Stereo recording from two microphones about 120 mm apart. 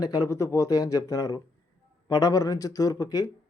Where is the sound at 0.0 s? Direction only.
30° left (ahead or behind).